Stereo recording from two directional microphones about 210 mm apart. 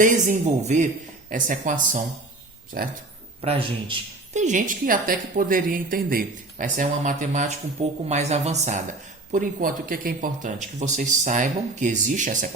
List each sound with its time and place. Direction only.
0.0 s a woman's voice: 35° right (ahead or behind)
3.4 s a man's voice: 25° right (ahead or behind)